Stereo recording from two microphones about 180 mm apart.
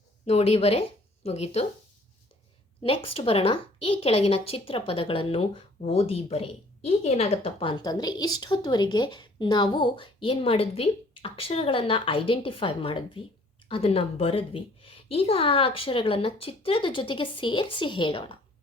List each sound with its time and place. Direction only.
0.3 s speech: 35° left (ahead or behind)
2.8 s a woman's voice: 30° left (ahead or behind)